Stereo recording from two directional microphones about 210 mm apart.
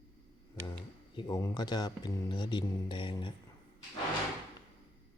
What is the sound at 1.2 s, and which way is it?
Speech, 20° left (ahead or behind).